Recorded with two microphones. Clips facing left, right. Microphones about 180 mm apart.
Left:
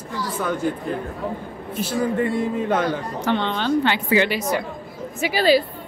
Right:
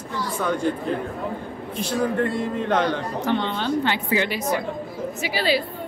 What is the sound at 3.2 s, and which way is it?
A woman's voice, 85° left.